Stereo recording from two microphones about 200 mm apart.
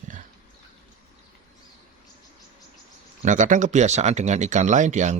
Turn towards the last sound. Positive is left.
turn(degrees=-35)  # may be behind; listen again after turning